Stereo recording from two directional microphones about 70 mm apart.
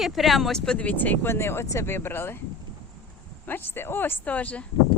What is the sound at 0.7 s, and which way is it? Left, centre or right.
Speech, centre.